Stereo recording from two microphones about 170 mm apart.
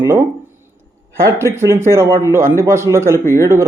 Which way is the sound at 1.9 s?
15° right (ahead or behind).